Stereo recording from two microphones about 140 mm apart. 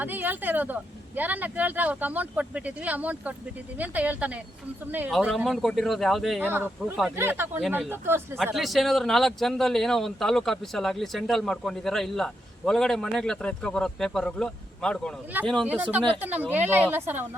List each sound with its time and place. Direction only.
0.0 s speech: 10° right (ahead or behind)
5.5 s speech: 5° left (ahead or behind)
6.4 s speech: 15° right (ahead or behind)
8.5 s speech: centre (ahead or behind)
15.6 s speech: 10° right (ahead or behind)